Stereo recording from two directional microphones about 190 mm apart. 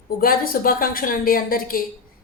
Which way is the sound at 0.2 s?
50° left (ahead or behind).